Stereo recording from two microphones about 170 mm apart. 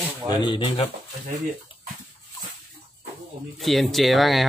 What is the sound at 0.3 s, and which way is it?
Speech, 30° left (ahead or behind).